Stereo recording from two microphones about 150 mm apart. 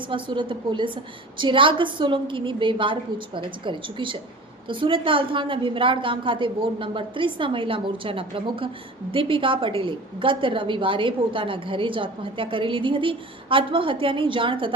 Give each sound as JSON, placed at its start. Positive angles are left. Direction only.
{"t": 0.1, "sound": "a woman's voice", "side_deg": -35}